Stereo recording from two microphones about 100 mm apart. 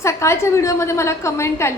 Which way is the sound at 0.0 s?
30° left (ahead or behind).